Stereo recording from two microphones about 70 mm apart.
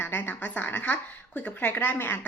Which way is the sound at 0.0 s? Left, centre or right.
Left.